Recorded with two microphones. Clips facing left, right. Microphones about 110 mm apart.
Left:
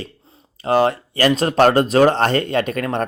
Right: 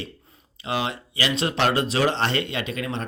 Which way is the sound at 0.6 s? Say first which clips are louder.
Left 11 dB; 45° left (ahead or behind).